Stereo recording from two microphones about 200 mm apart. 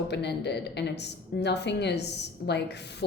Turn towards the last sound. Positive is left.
turn(degrees=55)  # may be behind; listen again after turning